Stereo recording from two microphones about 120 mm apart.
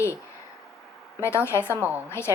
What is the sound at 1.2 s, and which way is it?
A woman's voice, 20° left (ahead or behind).